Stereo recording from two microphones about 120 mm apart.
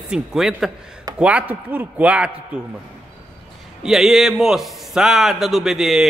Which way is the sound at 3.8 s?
Centre (ahead or behind).